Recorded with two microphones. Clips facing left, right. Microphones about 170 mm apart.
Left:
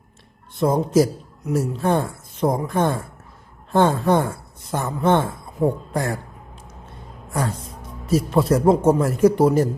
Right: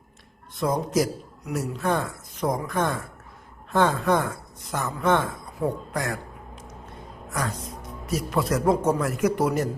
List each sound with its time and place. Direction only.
0.6 s speech: 30° left (ahead or behind)
8.0 s speech: 30° left (ahead or behind)